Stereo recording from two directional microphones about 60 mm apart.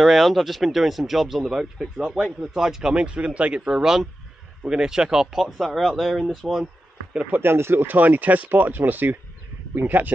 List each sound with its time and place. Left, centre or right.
0.0 s a man's voice: centre
7.2 s speech: right